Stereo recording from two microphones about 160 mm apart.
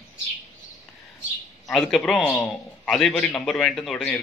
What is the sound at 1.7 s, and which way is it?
A man's voice, centre (ahead or behind).